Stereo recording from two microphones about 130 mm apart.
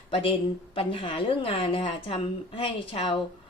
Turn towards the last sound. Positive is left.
turn(degrees=45)  # may be behind; listen again after turning